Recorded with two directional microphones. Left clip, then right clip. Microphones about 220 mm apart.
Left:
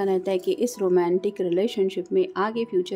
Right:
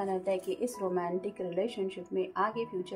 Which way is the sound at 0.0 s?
45° left (ahead or behind).